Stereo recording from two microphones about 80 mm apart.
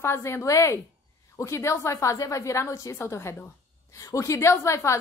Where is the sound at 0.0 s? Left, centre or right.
Left.